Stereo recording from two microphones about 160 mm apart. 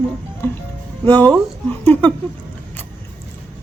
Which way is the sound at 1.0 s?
10° left (ahead or behind).